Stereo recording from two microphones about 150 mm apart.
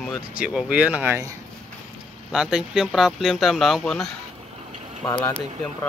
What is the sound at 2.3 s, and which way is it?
Speech, 5° right (ahead or behind).